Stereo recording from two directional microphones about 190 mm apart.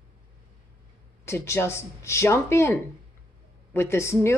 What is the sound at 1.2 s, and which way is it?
A woman's voice, 15° left (ahead or behind).